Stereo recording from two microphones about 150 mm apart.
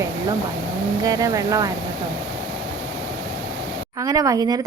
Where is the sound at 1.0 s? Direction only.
25° right (ahead or behind).